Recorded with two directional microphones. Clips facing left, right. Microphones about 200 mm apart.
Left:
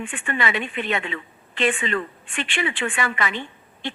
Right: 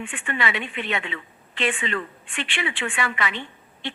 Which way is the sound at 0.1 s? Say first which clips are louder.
Left 2 dB; 45° left (ahead or behind).